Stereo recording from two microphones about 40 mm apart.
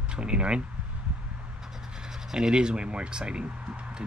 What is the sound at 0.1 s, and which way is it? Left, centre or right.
Speech, right.